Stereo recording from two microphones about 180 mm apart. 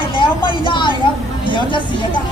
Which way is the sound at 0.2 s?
25° left (ahead or behind).